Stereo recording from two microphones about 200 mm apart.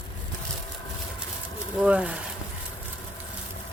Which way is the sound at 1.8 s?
5° right (ahead or behind).